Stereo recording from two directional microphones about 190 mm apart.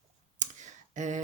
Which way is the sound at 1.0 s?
40° right (ahead or behind).